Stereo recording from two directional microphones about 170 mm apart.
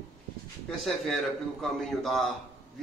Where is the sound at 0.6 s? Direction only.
Centre (ahead or behind).